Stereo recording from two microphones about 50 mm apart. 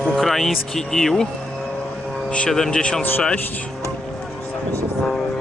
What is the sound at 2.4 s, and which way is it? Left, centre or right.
Speech, centre.